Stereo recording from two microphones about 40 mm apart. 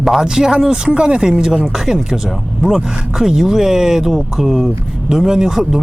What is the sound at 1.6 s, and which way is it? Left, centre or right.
Speech, centre.